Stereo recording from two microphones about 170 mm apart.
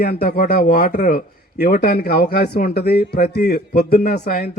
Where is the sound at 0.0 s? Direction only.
60° left (ahead or behind).